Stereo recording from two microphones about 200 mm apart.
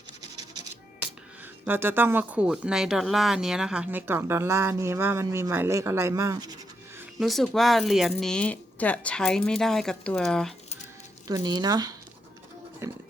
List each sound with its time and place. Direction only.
1.6 s speech: 10° right (ahead or behind)
7.2 s speech: centre (ahead or behind)
11.3 s speech: 20° right (ahead or behind)
12.8 s music: 15° right (ahead or behind)